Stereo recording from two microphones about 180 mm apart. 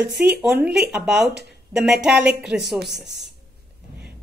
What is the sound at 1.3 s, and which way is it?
Speech, 65° right (ahead or behind).